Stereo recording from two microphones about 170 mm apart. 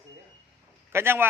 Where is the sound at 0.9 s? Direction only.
15° right (ahead or behind).